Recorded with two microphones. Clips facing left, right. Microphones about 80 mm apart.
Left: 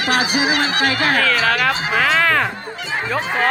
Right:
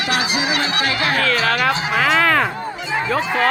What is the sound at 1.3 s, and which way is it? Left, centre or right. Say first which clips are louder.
Speech: even; centre.